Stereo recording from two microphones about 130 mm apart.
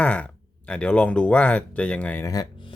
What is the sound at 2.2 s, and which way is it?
Speech, 30° left (ahead or behind).